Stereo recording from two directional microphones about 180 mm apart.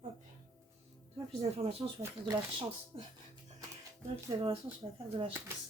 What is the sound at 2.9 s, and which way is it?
Speech, 30° right (ahead or behind).